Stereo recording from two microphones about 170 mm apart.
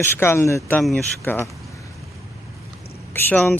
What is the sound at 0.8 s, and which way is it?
Speech, centre (ahead or behind).